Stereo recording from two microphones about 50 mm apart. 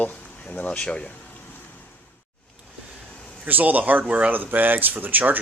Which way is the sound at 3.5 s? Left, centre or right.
Right.